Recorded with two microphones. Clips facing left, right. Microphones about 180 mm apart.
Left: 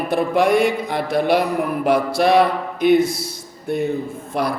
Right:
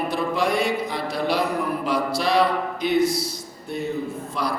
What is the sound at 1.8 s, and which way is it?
Speech, 55° left (ahead or behind).